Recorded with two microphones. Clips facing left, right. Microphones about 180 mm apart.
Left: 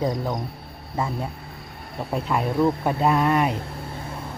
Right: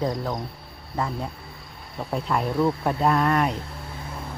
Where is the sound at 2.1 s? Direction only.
5° left (ahead or behind).